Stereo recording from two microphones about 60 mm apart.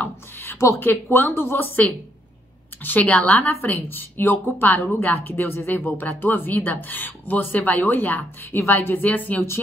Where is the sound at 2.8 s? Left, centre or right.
Left.